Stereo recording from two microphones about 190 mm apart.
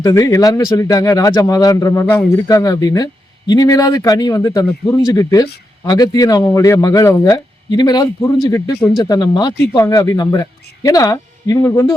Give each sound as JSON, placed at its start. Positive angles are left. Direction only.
{"t": 0.0, "sound": "speech", "side_deg": 15}